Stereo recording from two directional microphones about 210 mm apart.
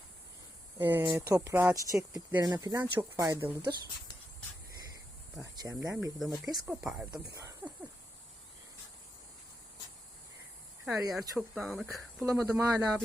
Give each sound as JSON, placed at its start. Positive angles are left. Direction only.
{"t": 1.0, "sound": "speech", "side_deg": -15}
{"t": 5.4, "sound": "speech", "side_deg": -15}
{"t": 6.4, "sound": "speech", "side_deg": 0}
{"t": 7.1, "sound": "snake", "side_deg": -15}
{"t": 10.8, "sound": "speech", "side_deg": 0}
{"t": 12.2, "sound": "speech", "side_deg": -15}